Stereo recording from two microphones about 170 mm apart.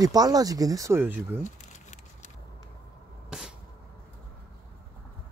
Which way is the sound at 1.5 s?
45° left (ahead or behind).